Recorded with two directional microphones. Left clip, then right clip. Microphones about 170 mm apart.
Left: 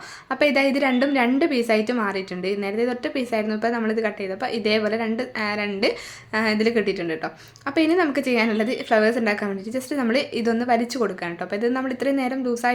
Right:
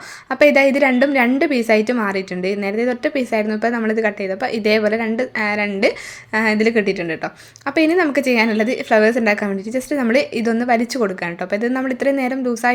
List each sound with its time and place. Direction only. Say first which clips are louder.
0.3 s a woman's voice: right 7 dB; 30° right (ahead or behind)